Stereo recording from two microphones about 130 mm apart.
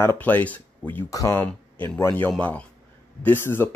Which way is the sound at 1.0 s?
25° left (ahead or behind).